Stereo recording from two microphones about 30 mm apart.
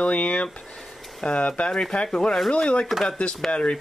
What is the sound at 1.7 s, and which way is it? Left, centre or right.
Speech, left.